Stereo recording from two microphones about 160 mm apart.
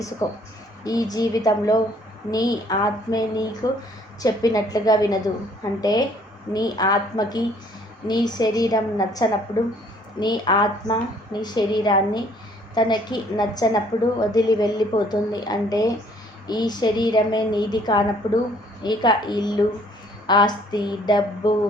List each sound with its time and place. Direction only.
0.2 s a woman's voice: 20° left (ahead or behind)